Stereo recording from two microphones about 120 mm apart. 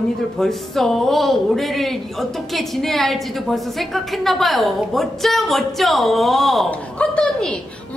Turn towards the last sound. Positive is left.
turn(degrees=10)  # may be behind; listen again after turning